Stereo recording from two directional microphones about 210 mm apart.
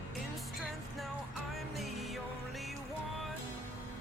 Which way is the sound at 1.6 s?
Centre (ahead or behind).